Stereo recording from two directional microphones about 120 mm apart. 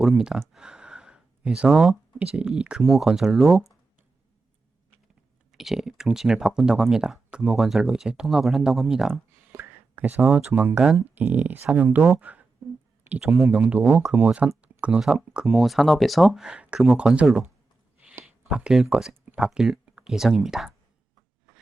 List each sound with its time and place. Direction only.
0.2 s speech: 5° right (ahead or behind)
5.5 s speech: 5° right (ahead or behind)
9.5 s speech: 15° right (ahead or behind)
18.5 s speech: 5° right (ahead or behind)